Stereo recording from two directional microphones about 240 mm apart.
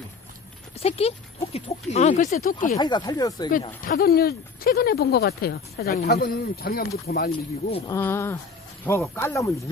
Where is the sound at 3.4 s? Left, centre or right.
Left.